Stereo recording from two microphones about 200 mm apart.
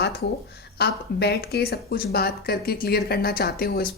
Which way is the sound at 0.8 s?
50° left (ahead or behind).